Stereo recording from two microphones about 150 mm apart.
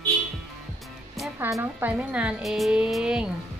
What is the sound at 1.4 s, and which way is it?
Speech, 15° right (ahead or behind).